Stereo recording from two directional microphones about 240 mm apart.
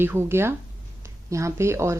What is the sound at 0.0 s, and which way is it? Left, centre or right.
Speech, centre.